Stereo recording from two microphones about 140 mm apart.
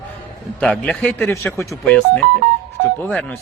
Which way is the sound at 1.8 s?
5° left (ahead or behind).